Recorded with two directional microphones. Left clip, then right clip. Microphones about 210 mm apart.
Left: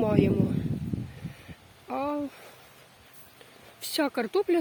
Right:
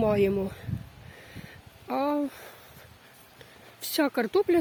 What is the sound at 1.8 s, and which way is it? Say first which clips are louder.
Speech: right 3 dB; 20° right (ahead or behind).